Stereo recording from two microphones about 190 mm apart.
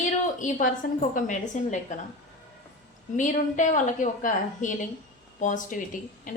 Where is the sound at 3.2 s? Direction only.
40° left (ahead or behind).